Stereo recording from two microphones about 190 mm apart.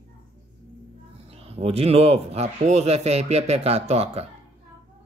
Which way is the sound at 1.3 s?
30° right (ahead or behind).